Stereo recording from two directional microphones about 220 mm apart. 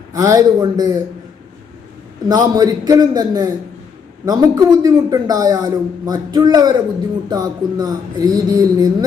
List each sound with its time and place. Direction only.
0.1 s speech: 15° right (ahead or behind)
2.3 s speech: 15° right (ahead or behind)